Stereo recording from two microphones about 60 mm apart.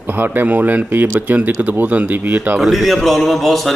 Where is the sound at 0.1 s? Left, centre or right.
Right.